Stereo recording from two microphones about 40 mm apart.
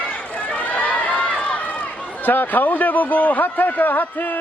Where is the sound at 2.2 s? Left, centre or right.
Left.